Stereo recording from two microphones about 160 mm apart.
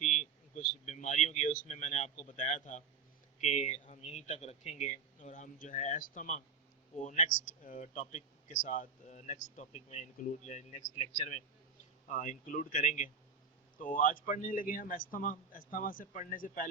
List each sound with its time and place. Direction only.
0.0 s a man's voice: 50° left (ahead or behind)